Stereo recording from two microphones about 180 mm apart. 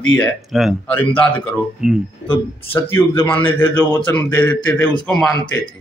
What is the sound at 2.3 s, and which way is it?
Speech, 30° left (ahead or behind).